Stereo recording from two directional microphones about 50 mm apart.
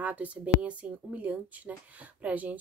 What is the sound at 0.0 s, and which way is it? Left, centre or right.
Speech, right.